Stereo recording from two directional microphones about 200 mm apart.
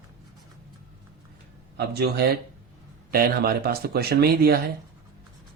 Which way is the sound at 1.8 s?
55° right (ahead or behind).